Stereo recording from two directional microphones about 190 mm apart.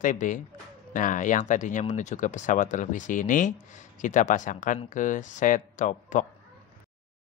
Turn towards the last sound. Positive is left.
turn(degrees=40)  # may be behind; listen again after turning